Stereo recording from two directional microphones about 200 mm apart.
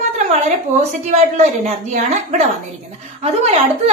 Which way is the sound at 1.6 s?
35° right (ahead or behind).